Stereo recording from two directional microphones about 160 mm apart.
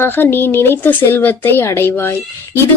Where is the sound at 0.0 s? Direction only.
15° left (ahead or behind).